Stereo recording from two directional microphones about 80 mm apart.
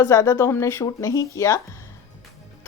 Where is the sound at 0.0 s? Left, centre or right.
Left.